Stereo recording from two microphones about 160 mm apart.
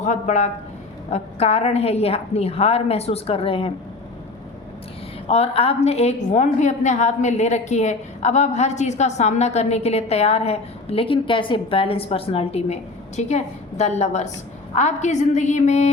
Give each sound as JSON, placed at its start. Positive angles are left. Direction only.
{"t": 0.0, "sound": "a woman's voice", "side_deg": 50}
{"t": 5.3, "sound": "a woman's voice", "side_deg": 40}